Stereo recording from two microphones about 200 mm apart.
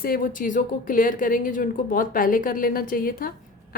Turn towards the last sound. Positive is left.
turn(degrees=45)  # may be behind; listen again after turning